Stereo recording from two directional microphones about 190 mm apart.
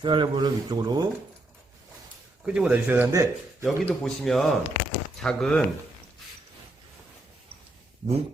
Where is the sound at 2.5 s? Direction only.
5° right (ahead or behind).